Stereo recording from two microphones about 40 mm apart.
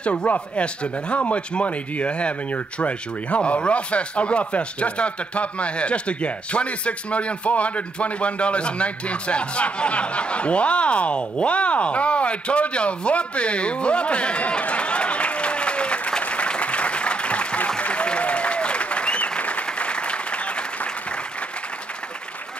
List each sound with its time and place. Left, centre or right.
0.0 s speech: left